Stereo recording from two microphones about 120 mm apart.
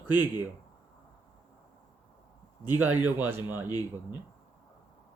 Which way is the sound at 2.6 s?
15° right (ahead or behind).